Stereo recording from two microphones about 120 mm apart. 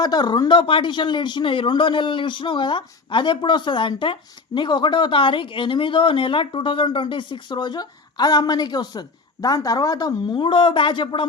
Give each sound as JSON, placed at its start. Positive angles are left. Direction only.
{"t": 0.0, "sound": "speech", "side_deg": 35}
{"t": 10.3, "sound": "speech", "side_deg": 45}